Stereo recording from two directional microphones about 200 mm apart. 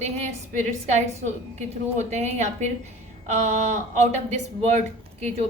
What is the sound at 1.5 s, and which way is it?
Speech, 35° right (ahead or behind).